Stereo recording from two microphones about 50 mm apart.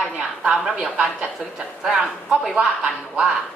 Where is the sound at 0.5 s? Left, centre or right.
Centre.